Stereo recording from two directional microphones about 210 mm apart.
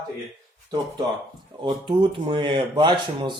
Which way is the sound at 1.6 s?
25° right (ahead or behind).